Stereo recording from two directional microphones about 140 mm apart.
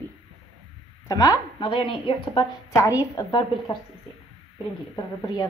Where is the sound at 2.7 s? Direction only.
25° left (ahead or behind).